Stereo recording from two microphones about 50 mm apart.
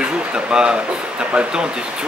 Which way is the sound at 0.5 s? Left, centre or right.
Centre.